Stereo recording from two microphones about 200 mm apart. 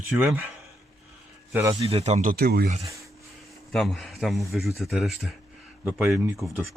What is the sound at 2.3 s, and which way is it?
Speech, 50° right (ahead or behind).